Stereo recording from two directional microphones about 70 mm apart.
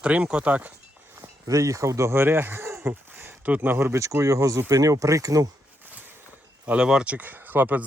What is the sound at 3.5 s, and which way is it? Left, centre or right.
Speech, right.